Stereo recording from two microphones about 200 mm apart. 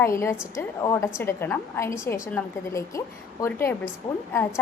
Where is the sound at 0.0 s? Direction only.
15° left (ahead or behind).